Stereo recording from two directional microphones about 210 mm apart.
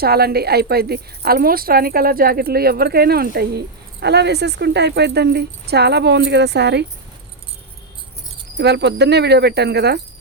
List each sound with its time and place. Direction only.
0.0 s a woman's voice: 50° right (ahead or behind)
8.5 s a woman's voice: 55° right (ahead or behind)